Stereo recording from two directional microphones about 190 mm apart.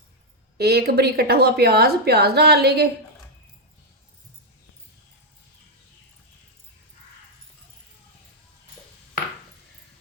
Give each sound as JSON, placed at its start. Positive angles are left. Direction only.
{"t": 0.5, "sound": "a woman's voice", "side_deg": -55}